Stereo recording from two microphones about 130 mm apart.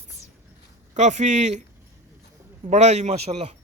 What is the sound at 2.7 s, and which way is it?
Speech, 60° right (ahead or behind).